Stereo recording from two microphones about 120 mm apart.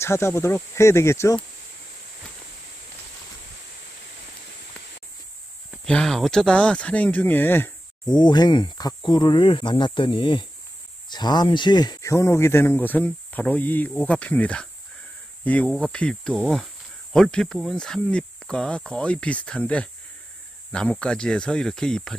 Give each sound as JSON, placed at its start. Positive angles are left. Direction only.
{"t": 0.0, "sound": "speech", "side_deg": 20}
{"t": 5.9, "sound": "cricket", "side_deg": 5}
{"t": 8.0, "sound": "speech", "side_deg": 35}
{"t": 11.1, "sound": "cricket", "side_deg": 35}
{"t": 15.4, "sound": "speech", "side_deg": 15}
{"t": 15.7, "sound": "cricket", "side_deg": 10}